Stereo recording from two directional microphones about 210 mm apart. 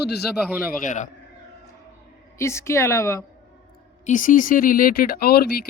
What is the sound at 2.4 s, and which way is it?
Speech, 15° left (ahead or behind).